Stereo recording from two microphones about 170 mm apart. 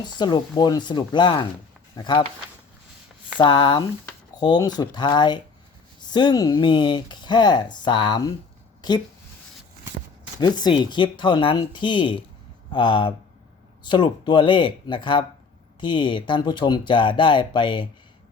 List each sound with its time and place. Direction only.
0.0 s speech: 25° left (ahead or behind)
3.3 s speech: 25° left (ahead or behind)
10.4 s speech: 25° left (ahead or behind)